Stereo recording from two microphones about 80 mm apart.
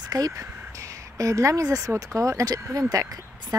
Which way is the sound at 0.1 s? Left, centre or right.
Right.